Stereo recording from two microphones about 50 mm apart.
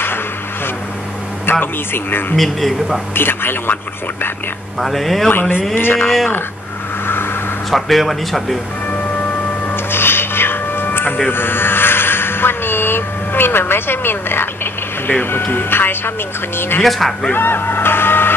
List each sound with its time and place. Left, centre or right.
1.4 s music: left
2.3 s speech: centre
3.2 s music: left
4.7 s speech: centre
5.3 s music: left
5.9 s speech: centre
7.7 s speech: centre
9.8 s music: left
11.2 s speech: left
15.5 s music: left